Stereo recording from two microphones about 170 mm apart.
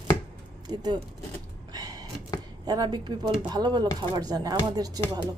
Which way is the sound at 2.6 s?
25° right (ahead or behind).